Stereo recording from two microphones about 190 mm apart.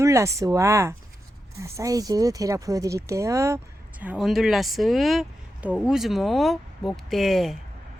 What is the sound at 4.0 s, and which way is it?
Speech, 5° right (ahead or behind).